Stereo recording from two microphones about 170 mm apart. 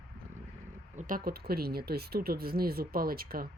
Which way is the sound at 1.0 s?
55° right (ahead or behind).